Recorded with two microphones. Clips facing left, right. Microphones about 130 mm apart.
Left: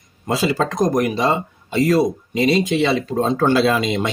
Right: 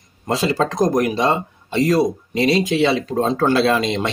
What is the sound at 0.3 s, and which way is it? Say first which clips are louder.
Speech: even; centre (ahead or behind).